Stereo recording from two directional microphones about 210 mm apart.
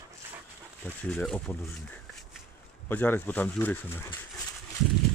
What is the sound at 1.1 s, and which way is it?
Speech, 5° left (ahead or behind).